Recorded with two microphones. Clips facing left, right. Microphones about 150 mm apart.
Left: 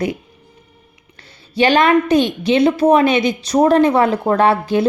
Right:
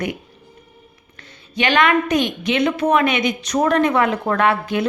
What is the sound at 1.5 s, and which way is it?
A woman's voice, 35° left (ahead or behind).